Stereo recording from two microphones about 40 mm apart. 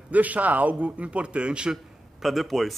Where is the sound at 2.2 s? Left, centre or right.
Centre.